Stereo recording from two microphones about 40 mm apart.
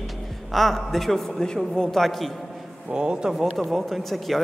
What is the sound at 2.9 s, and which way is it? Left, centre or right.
Speech, right.